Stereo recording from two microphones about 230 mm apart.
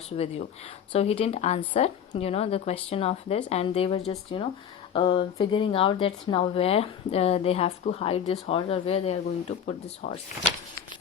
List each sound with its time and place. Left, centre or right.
0.9 s speech: left